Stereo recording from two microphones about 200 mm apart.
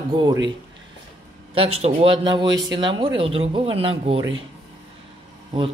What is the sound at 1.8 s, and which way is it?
Speech, 30° right (ahead or behind).